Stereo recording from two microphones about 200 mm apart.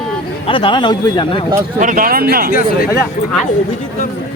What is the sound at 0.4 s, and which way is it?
Speech, 25° left (ahead or behind).